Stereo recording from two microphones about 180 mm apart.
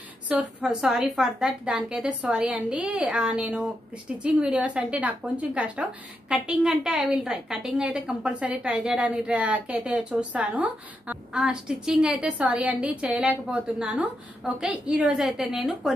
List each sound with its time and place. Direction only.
0.3 s a woman's voice: 5° right (ahead or behind)